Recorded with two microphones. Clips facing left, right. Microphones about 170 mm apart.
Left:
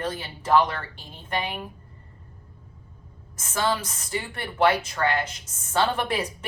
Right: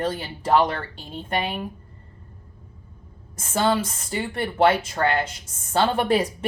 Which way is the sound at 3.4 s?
30° right (ahead or behind).